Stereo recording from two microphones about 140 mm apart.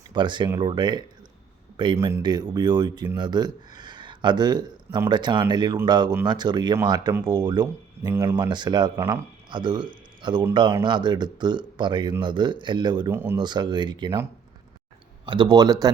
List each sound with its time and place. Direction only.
0.1 s speech: 35° right (ahead or behind)
13.1 s speech: 15° right (ahead or behind)
13.3 s speech: 30° right (ahead or behind)
15.3 s speech: 30° right (ahead or behind)